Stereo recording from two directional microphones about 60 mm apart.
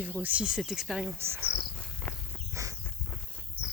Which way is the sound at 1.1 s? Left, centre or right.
Right.